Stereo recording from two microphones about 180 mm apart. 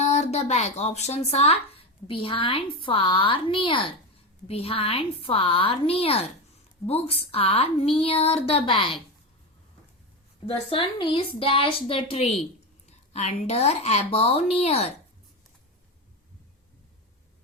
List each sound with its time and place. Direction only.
0.0 s speech: 35° left (ahead or behind)
10.4 s speech: 30° left (ahead or behind)